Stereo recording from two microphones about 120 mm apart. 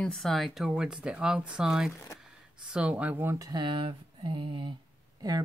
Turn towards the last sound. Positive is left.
turn(degrees=-30)  # may be behind; listen again after turning